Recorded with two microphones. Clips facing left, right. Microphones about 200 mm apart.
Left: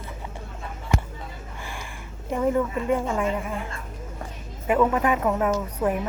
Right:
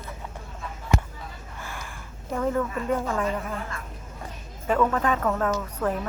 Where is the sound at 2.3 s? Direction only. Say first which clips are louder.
Left 3 dB; 15° left (ahead or behind).